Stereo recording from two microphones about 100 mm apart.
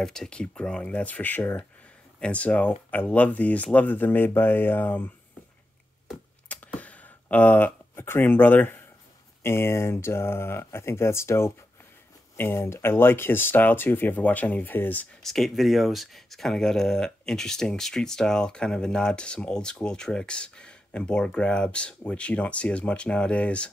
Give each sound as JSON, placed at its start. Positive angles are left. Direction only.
{"t": 0.0, "sound": "speech", "side_deg": 5}
{"t": 6.5, "sound": "a sound", "side_deg": 15}
{"t": 9.4, "sound": "speech", "side_deg": 25}
{"t": 15.2, "sound": "speech", "side_deg": 0}